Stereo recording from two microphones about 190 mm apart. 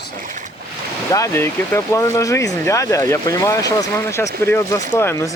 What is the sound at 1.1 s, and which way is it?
Speech, 15° left (ahead or behind).